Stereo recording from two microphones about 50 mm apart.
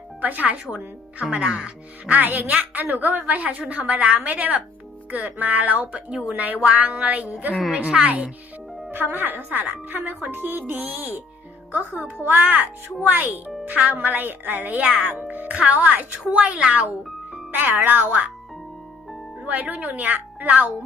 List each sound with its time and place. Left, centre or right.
0.2 s a woman's voice: right
6.1 s speech: centre
6.3 s a woman's voice: right
8.9 s a woman's voice: right
17.0 s music: centre
17.5 s a woman's voice: right
19.4 s music: right
19.6 s a woman's voice: right